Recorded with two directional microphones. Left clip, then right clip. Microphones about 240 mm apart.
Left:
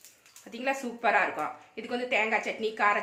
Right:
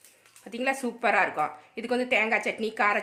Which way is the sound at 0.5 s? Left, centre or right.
Right.